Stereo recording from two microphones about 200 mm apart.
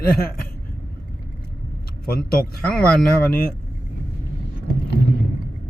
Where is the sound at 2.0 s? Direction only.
50° left (ahead or behind).